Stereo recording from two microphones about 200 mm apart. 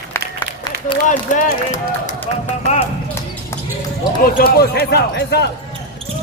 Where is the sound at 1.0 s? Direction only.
40° left (ahead or behind).